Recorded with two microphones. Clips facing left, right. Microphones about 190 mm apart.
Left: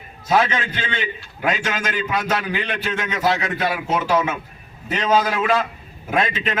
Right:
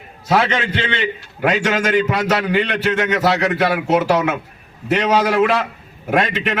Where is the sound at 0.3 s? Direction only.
70° right (ahead or behind).